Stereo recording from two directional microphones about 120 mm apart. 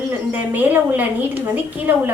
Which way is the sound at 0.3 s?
15° right (ahead or behind).